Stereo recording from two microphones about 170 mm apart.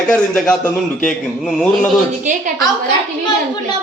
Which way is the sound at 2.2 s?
50° right (ahead or behind).